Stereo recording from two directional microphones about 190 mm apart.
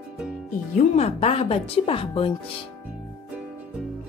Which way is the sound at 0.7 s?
35° left (ahead or behind).